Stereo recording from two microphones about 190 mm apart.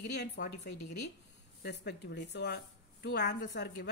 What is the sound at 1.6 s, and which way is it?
Speech, 60° left (ahead or behind).